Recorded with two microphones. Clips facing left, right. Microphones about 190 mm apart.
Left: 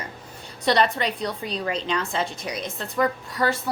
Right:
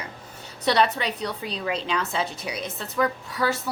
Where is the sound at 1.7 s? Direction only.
5° right (ahead or behind).